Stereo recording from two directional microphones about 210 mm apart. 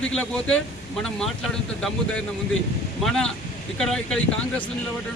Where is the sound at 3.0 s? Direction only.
5° left (ahead or behind).